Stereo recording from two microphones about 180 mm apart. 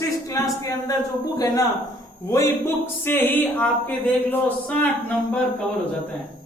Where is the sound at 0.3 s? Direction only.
20° left (ahead or behind).